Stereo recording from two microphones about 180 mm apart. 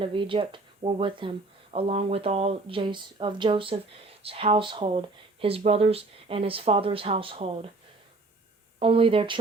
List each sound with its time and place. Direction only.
0.0 s speech: 30° right (ahead or behind)
8.8 s speech: 30° right (ahead or behind)